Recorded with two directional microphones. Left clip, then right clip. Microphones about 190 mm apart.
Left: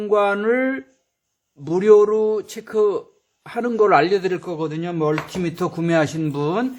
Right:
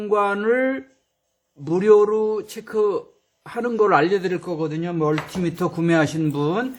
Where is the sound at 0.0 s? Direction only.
15° left (ahead or behind).